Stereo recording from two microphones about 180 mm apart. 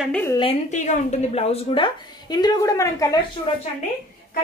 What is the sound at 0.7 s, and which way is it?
A woman's voice, 40° left (ahead or behind).